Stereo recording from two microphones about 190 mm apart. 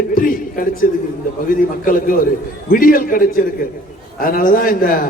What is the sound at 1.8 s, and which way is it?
A man's voice, 45° left (ahead or behind).